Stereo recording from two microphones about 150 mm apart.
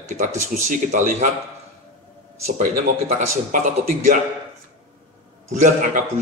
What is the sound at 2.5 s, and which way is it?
Speech, 50° right (ahead or behind).